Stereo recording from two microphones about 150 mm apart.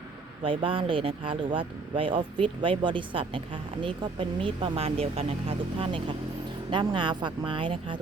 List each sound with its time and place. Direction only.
0.4 s speech: 35° right (ahead or behind)